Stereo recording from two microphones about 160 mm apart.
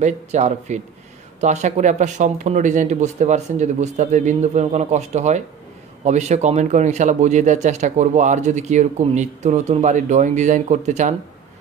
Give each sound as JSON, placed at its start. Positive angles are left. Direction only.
{"t": 0.0, "sound": "speech", "side_deg": -45}